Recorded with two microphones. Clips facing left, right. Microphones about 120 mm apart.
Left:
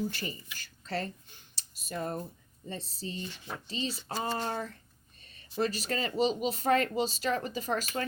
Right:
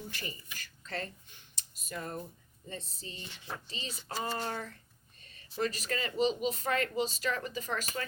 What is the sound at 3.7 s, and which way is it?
Speech, 30° left (ahead or behind).